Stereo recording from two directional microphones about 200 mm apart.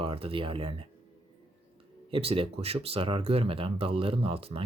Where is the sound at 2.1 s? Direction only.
30° right (ahead or behind).